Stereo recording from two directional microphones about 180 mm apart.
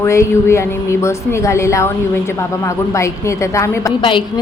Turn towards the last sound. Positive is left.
turn(degrees=25)  # may be behind; listen again after turning